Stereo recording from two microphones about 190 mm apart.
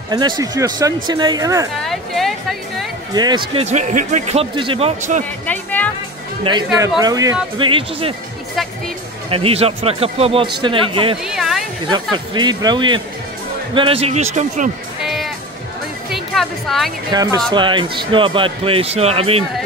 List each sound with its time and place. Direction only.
0.4 s speech: 20° right (ahead or behind)
1.8 s speech: centre (ahead or behind)
3.2 s speech: 25° right (ahead or behind)
5.5 s music: 10° left (ahead or behind)
6.4 s speech: 25° right (ahead or behind)
9.3 s speech: 30° right (ahead or behind)
11.2 s a sound: centre (ahead or behind)
11.9 s speech: 20° right (ahead or behind); by 14.7 s 40° right (ahead or behind)
15.0 s music: centre (ahead or behind)
17.1 s speech: 20° right (ahead or behind)